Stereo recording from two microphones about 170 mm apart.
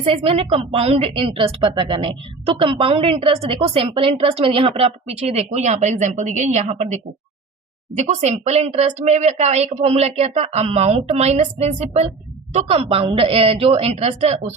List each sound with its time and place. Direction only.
0.0 s a woman's voice: 35° right (ahead or behind)